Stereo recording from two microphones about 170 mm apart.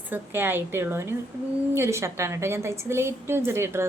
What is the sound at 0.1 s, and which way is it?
A woman's voice, 10° right (ahead or behind).